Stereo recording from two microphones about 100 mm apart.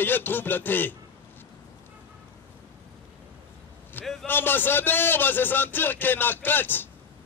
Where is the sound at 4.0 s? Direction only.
20° left (ahead or behind).